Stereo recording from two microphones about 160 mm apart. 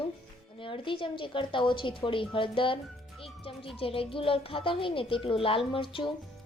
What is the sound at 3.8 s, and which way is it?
A woman's voice, 35° left (ahead or behind).